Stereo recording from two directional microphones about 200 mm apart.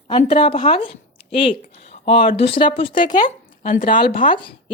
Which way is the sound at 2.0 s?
25° left (ahead or behind).